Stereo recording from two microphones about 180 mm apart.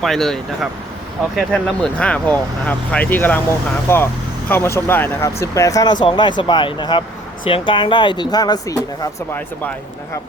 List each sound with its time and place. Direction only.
0.0 s speech: centre (ahead or behind); by 8.8 s 20° left (ahead or behind)